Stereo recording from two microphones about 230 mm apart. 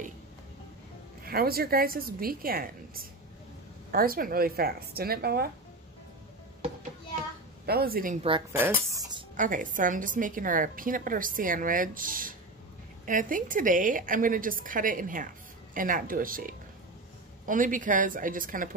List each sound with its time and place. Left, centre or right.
1.2 s a woman's voice: right
7.6 s a woman's voice: right
8.2 s speech: right
8.5 s speech: centre
9.4 s a woman's voice: right